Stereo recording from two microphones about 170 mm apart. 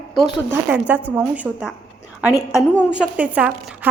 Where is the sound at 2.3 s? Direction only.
15° left (ahead or behind).